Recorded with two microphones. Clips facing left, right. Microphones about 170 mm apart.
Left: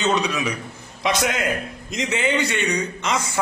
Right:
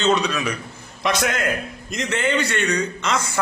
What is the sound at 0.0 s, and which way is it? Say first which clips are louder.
A man's voice: right 1 dB; 15° left (ahead or behind).